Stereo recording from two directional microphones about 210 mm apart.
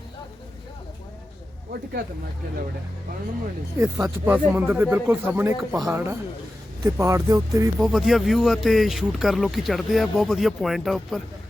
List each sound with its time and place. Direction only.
1.7 s speech: 45° right (ahead or behind)
3.8 s speech: 15° right (ahead or behind)
6.9 s speech: 15° right (ahead or behind)
7.8 s speech: centre (ahead or behind)